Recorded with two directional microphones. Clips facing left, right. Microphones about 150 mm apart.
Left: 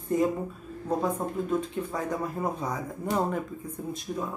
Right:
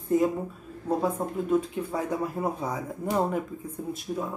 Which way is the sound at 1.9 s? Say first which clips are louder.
Right 2 dB; 10° right (ahead or behind).